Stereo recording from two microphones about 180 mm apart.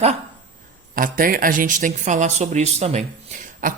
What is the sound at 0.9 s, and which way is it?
Speech, 50° right (ahead or behind).